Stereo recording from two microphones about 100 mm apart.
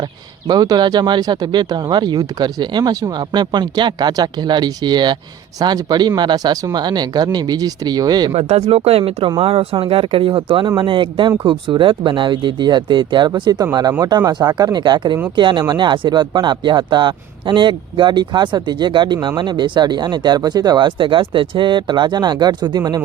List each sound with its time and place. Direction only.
0.0 s speech: 45° right (ahead or behind)
8.3 s speech: 90° right; by 23.0 s 40° right (ahead or behind)